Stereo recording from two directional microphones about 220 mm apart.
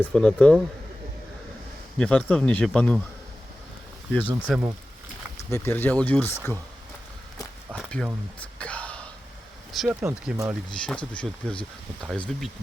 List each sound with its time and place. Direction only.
0.0 s speech: 5° left (ahead or behind)
2.0 s speech: 5° left (ahead or behind)
4.4 s speech: 5° right (ahead or behind)
5.5 s speech: 10° left (ahead or behind)
7.7 s a sound: 5° left (ahead or behind)
8.4 s throat clearing: 5° left (ahead or behind)
9.7 s speech: 5° right (ahead or behind)
10.7 s speech: 5° left (ahead or behind)